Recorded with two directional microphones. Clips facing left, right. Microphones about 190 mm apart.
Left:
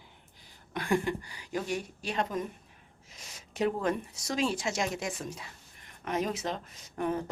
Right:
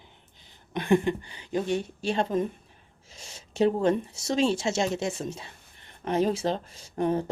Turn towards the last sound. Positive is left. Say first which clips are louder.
# right 5 dB
turn(degrees=-30)  # may be behind; listen again after turning